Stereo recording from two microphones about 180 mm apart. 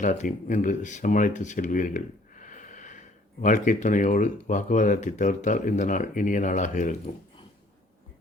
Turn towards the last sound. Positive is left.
turn(degrees=45)  # may be behind; listen again after turning